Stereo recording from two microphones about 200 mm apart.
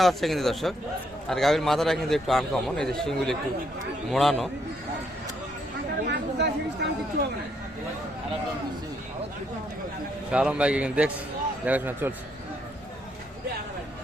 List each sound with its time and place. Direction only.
0.0 s a man's voice: centre (ahead or behind)
6.1 s speech: 60° right (ahead or behind)
10.3 s a man's voice: 5° right (ahead or behind)